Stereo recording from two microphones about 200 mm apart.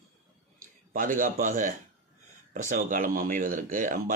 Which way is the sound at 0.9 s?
40° right (ahead or behind).